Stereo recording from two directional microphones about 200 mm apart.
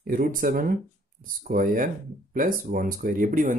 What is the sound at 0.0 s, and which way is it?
Speech, 45° right (ahead or behind).